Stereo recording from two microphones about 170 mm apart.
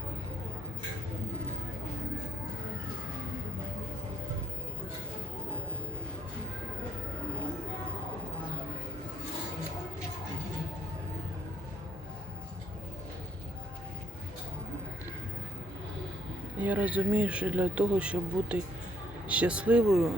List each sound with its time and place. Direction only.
16.6 s speech: 10° right (ahead or behind)